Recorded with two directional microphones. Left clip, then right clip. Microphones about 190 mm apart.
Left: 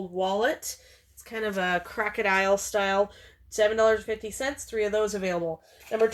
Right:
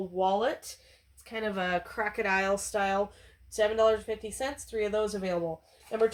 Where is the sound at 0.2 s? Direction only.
45° left (ahead or behind).